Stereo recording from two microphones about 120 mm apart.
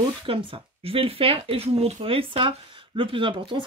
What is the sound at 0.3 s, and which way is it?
Speech, 50° right (ahead or behind).